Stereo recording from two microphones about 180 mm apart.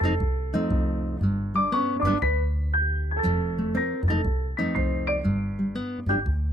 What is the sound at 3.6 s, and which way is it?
Music, centre (ahead or behind).